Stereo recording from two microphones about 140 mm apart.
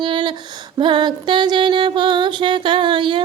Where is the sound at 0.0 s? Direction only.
35° right (ahead or behind).